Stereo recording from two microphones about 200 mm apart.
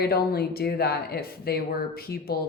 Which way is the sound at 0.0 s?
50° left (ahead or behind).